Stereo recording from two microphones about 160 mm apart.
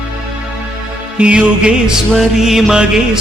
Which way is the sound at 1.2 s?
5° right (ahead or behind).